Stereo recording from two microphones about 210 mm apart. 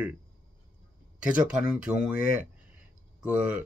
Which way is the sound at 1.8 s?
5° right (ahead or behind).